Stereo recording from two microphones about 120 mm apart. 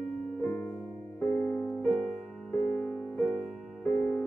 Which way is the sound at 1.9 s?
5° left (ahead or behind).